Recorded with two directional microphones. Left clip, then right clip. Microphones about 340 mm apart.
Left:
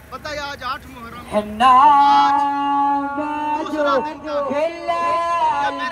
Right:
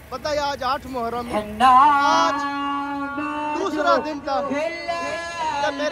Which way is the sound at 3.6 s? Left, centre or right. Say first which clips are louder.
Right 1 dB; centre.